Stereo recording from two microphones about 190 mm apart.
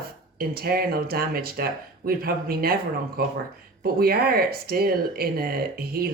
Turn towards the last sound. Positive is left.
turn(degrees=-50)  # may be behind; listen again after turning